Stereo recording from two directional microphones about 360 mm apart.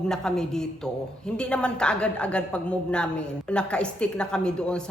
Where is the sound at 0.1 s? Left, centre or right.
Centre.